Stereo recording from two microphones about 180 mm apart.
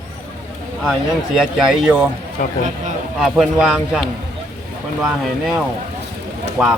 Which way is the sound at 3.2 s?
Centre (ahead or behind).